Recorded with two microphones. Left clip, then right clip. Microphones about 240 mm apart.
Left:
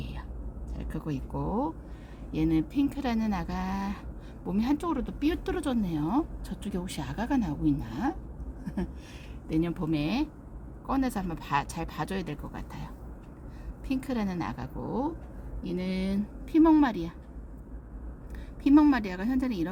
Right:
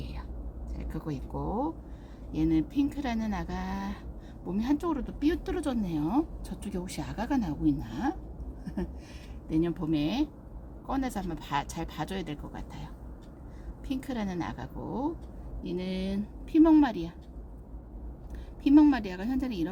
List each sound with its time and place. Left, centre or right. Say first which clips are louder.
0.8 s speech: left 2 dB; centre
8.6 s a sound: left 1 dB; centre
9.5 s speech: even; centre
18.6 s speech: even; centre